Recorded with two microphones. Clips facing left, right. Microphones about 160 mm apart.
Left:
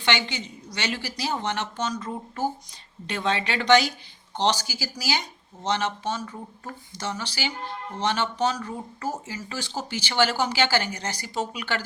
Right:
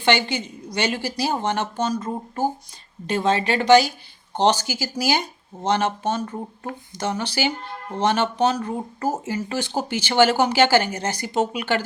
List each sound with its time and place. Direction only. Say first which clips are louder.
0.0 s a woman's voice: right 6 dB; 50° right (ahead or behind)